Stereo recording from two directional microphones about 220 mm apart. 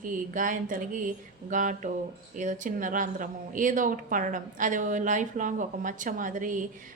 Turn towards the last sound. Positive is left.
turn(degrees=-35)  # may be behind; listen again after turning